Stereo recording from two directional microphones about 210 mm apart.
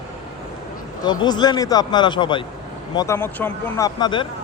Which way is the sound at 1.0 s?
20° left (ahead or behind).